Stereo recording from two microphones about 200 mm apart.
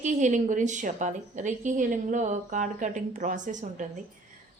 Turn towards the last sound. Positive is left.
turn(degrees=-40)  # may be behind; listen again after turning